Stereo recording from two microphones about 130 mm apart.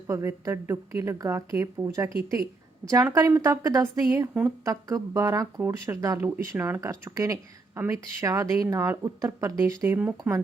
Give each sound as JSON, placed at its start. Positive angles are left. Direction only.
{"t": 0.1, "sound": "speech", "side_deg": -20}